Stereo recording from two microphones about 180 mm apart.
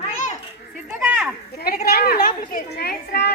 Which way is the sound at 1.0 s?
10° right (ahead or behind).